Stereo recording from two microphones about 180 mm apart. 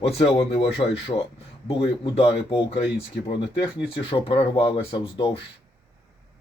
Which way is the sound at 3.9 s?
30° left (ahead or behind).